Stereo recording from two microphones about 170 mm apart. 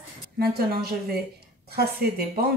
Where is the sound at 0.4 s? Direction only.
65° right (ahead or behind).